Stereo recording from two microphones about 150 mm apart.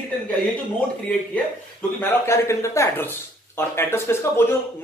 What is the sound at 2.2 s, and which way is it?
Speech, 20° left (ahead or behind).